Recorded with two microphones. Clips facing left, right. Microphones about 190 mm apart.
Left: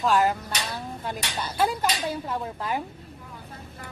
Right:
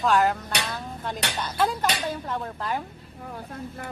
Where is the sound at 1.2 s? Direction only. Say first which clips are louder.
Right 4 dB; 70° right (ahead or behind).